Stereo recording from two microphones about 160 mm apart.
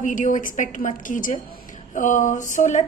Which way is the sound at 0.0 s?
55° left (ahead or behind).